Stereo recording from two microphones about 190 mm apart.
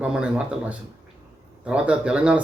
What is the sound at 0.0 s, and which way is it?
Speech, 5° right (ahead or behind).